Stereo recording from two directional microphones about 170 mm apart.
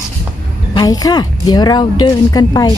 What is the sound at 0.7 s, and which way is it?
A woman's voice, 20° left (ahead or behind).